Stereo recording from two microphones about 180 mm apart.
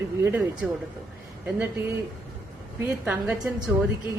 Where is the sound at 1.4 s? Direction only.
10° right (ahead or behind).